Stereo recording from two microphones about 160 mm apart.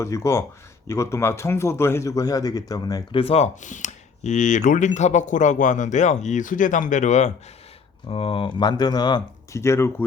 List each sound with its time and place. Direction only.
0.0 s speech: 20° left (ahead or behind); by 7.3 s 45° left (ahead or behind)
8.0 s speech: 35° left (ahead or behind); by 9.9 s 15° left (ahead or behind)